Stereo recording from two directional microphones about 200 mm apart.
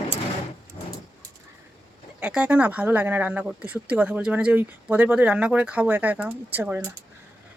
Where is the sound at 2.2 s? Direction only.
5° right (ahead or behind).